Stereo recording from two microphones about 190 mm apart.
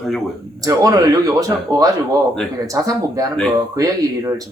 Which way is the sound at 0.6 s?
20° right (ahead or behind).